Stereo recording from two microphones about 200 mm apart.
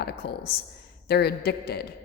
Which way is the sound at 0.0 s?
50° left (ahead or behind).